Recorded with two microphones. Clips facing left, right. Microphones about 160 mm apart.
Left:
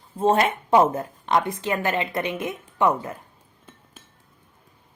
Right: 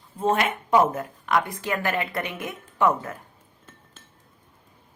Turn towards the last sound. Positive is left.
turn(degrees=10)  # may be behind; listen again after turning